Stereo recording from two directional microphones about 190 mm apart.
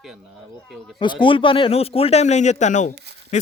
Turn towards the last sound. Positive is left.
turn(degrees=40)  # may be behind; listen again after turning